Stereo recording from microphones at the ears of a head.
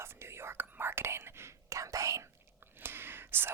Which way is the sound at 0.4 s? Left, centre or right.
Right.